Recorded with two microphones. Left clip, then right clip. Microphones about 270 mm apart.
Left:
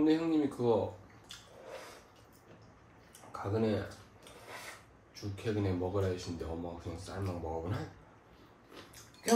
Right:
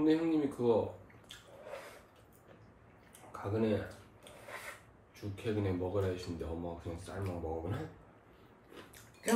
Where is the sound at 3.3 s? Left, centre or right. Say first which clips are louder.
Left 1 dB; centre.